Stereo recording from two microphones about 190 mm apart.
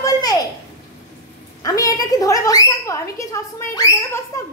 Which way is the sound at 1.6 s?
20° left (ahead or behind).